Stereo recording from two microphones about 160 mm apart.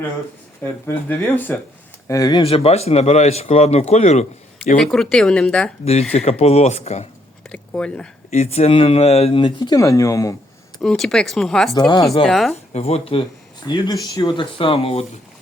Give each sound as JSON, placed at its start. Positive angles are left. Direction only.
{"t": 0.6, "sound": "speech", "side_deg": 15}
{"t": 2.4, "sound": "speech", "side_deg": 40}
{"t": 4.8, "sound": "speech", "side_deg": 5}
{"t": 5.8, "sound": "speech", "side_deg": 40}
{"t": 7.5, "sound": "speech", "side_deg": 5}
{"t": 8.3, "sound": "speech", "side_deg": 40}
{"t": 9.7, "sound": "speech", "side_deg": 20}
{"t": 10.8, "sound": "speech", "side_deg": 0}
{"t": 11.7, "sound": "speech", "side_deg": 25}
{"t": 12.2, "sound": "speech", "side_deg": 0}
{"t": 12.7, "sound": "speech", "side_deg": 40}
{"t": 13.7, "sound": "speech", "side_deg": 25}
{"t": 14.6, "sound": "speech", "side_deg": 35}